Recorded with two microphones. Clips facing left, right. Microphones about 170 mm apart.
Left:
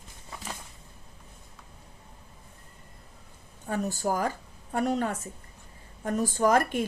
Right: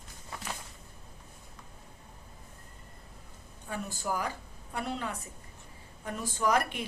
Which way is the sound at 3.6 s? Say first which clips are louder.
Left 7 dB; 45° left (ahead or behind).